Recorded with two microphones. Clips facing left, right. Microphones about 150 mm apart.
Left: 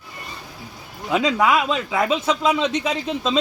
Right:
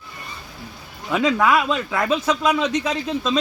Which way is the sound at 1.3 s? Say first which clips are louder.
Right 1 dB; 15° left (ahead or behind).